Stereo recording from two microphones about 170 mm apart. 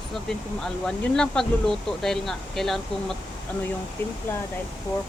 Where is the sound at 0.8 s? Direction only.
5° left (ahead or behind).